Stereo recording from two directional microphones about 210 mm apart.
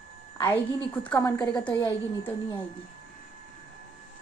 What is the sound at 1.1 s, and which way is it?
A woman's voice, 15° left (ahead or behind).